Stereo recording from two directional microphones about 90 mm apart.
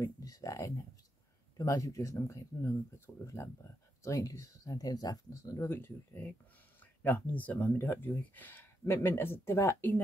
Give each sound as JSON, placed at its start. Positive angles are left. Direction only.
{"t": 0.0, "sound": "speech", "side_deg": 40}